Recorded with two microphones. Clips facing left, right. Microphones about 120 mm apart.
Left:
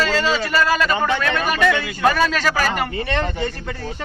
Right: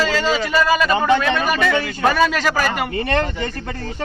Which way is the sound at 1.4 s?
Centre (ahead or behind).